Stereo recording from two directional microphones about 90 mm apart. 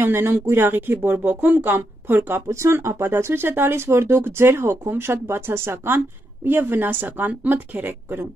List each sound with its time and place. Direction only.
0.0 s speech: 25° right (ahead or behind)